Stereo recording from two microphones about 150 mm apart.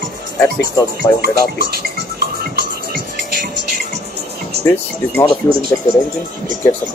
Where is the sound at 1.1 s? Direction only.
90° right.